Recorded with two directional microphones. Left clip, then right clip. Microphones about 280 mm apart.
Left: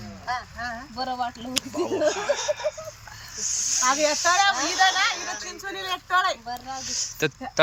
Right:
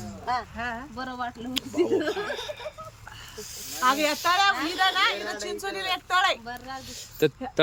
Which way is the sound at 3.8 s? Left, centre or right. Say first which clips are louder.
Even; right.